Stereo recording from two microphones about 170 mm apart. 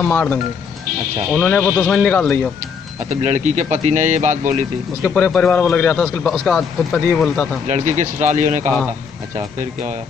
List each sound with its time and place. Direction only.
0.0 s speech: 10° left (ahead or behind)
3.1 s speech: 45° right (ahead or behind)
5.0 s speech: 10° left (ahead or behind)
7.6 s speech: 45° right (ahead or behind)